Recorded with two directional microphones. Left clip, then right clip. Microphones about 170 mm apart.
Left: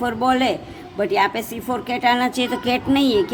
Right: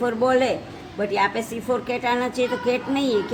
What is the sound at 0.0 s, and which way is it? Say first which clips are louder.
A woman's voice: left 1 dB; 45° left (ahead or behind).